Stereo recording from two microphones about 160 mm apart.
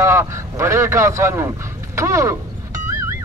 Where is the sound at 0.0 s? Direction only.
15° right (ahead or behind).